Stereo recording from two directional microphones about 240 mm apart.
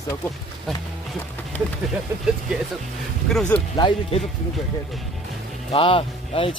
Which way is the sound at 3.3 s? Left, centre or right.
Centre.